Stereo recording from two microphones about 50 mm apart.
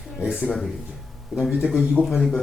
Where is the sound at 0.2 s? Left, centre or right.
Centre.